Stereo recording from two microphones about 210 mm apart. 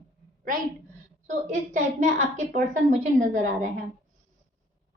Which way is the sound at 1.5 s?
35° right (ahead or behind).